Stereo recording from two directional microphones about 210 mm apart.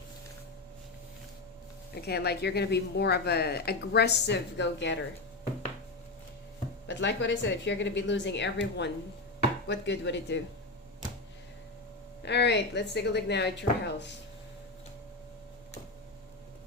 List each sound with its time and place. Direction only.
2.0 s speech: 50° left (ahead or behind)
6.8 s speech: 55° left (ahead or behind)
12.2 s speech: 55° left (ahead or behind)